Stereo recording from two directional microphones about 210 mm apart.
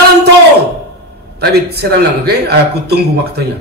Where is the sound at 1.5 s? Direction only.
50° right (ahead or behind).